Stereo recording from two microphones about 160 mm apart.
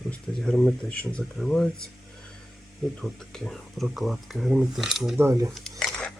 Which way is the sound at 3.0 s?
5° left (ahead or behind).